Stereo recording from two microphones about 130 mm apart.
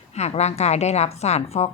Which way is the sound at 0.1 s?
55° left (ahead or behind).